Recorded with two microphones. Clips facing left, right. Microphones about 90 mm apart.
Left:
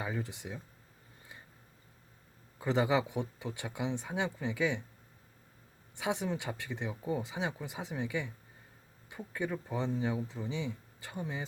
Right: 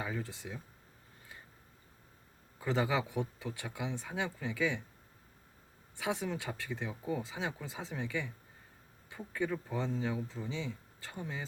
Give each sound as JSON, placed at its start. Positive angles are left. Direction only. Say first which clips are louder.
{"t": 0.0, "sound": "speech", "louder": "left 1 dB", "side_deg": 20}
{"t": 2.6, "sound": "speech", "louder": "left 3 dB", "side_deg": 20}
{"t": 6.0, "sound": "speech", "louder": "left 2 dB", "side_deg": 20}